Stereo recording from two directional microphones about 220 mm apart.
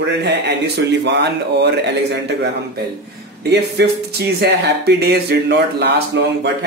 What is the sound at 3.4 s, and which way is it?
Speech, 50° right (ahead or behind).